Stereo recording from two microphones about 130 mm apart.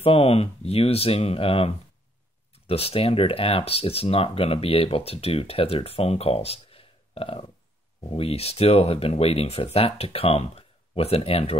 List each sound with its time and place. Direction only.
0.0 s speech: 50° left (ahead or behind)